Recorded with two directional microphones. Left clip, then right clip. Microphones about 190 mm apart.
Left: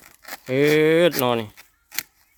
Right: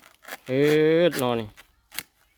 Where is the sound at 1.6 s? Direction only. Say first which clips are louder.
Left 5 dB; 5° left (ahead or behind).